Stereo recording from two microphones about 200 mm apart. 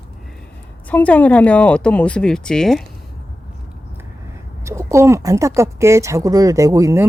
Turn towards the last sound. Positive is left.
turn(degrees=-15)  # may be behind; listen again after turning